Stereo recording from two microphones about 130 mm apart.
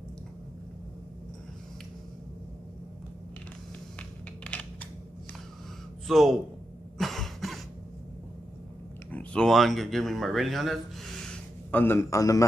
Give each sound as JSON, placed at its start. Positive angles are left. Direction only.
{"t": 4.5, "sound": "a sound", "side_deg": 10}
{"t": 6.0, "sound": "speech", "side_deg": 0}
{"t": 7.0, "sound": "cough", "side_deg": 0}
{"t": 9.1, "sound": "speech", "side_deg": 10}
{"t": 11.7, "sound": "a man's voice", "side_deg": 15}